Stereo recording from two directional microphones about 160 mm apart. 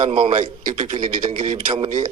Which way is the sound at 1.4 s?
45° right (ahead or behind).